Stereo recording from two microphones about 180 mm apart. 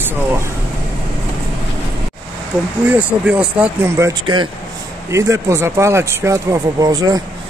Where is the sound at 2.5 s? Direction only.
15° right (ahead or behind).